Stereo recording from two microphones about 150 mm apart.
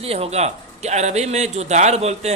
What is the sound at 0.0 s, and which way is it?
A man's voice, 40° right (ahead or behind).